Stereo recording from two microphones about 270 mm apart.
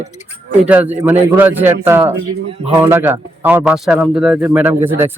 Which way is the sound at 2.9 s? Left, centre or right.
Centre.